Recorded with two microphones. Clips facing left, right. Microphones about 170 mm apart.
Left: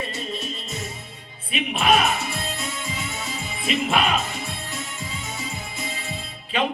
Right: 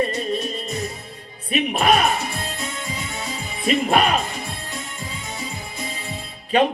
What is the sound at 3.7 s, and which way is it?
Music, 40° right (ahead or behind).